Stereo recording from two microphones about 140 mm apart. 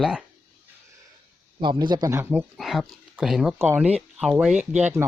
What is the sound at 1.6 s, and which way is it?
Speech, 35° right (ahead or behind).